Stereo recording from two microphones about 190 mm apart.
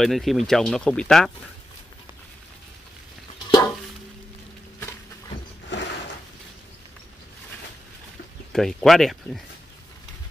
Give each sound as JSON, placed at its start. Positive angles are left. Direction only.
{"t": 0.0, "sound": "speech", "side_deg": 0}
{"t": 5.7, "sound": "a sound", "side_deg": 70}
{"t": 8.5, "sound": "speech", "side_deg": 0}